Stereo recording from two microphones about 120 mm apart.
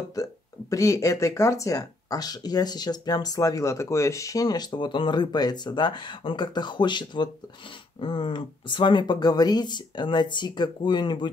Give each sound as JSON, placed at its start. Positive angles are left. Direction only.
{"t": 0.1, "sound": "speech", "side_deg": 30}